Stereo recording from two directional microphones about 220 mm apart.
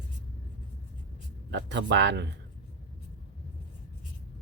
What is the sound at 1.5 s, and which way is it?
Speech, 55° right (ahead or behind).